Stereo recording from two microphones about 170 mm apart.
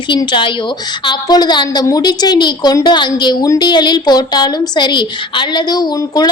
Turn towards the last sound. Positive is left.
turn(degrees=25)  # may be behind; listen again after turning